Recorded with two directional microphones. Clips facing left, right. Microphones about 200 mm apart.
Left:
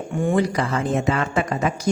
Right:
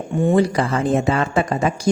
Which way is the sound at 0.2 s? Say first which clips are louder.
Right 4 dB; 25° right (ahead or behind).